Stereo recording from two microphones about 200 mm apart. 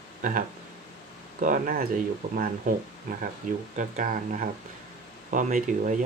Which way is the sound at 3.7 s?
45° right (ahead or behind).